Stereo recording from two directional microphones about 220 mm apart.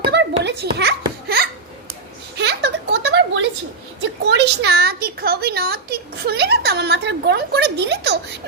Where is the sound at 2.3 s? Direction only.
50° right (ahead or behind).